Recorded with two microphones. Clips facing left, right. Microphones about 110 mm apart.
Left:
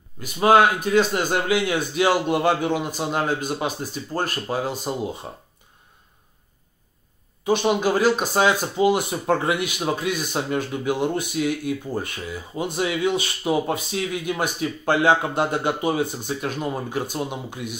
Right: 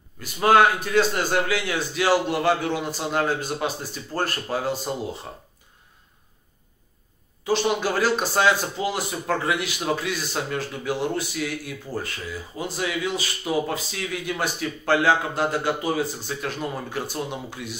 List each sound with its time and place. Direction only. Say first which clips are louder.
0.2 s speech: left 1 dB; 15° left (ahead or behind)
5.3 s speech: left 1 dB; 25° left (ahead or behind)
7.4 s speech: left 3 dB; 15° left (ahead or behind)